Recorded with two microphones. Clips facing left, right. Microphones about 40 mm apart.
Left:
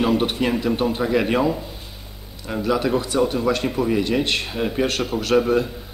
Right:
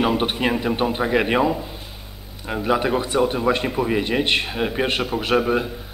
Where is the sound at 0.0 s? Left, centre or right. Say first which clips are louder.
Even; right.